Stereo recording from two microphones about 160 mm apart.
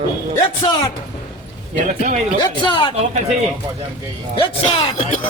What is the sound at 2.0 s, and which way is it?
Speech, 45° right (ahead or behind).